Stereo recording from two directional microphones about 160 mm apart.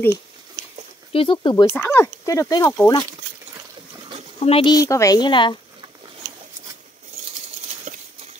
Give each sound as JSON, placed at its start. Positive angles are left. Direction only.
{"t": 1.1, "sound": "speech", "side_deg": 35}
{"t": 1.7, "sound": "speech", "side_deg": 15}
{"t": 4.4, "sound": "speech", "side_deg": 35}
{"t": 4.7, "sound": "a woman's voice", "side_deg": 20}